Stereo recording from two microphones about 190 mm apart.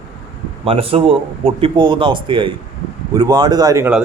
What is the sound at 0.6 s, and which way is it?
A man's voice, 30° right (ahead or behind).